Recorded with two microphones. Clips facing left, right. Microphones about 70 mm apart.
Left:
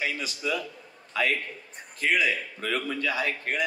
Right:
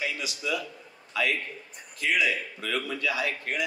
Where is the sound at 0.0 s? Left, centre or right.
Left.